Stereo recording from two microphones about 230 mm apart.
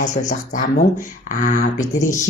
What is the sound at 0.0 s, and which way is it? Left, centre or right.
Speech, left.